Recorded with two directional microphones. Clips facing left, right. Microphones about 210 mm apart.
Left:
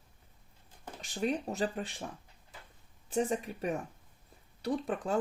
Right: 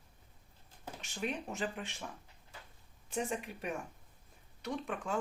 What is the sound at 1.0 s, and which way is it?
Speech, 35° left (ahead or behind).